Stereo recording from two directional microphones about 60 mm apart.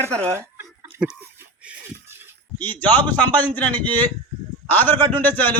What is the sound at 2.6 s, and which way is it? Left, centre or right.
A man's voice, left.